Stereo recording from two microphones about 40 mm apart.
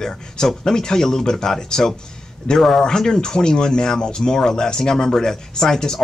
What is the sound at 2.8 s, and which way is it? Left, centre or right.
Speech, centre.